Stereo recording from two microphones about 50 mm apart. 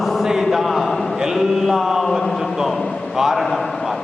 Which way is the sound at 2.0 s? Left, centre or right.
Centre.